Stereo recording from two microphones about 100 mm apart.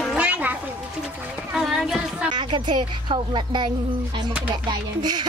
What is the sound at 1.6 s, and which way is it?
Speech, 5° right (ahead or behind).